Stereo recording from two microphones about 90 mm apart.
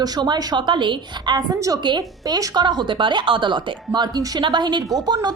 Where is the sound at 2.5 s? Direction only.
55° right (ahead or behind).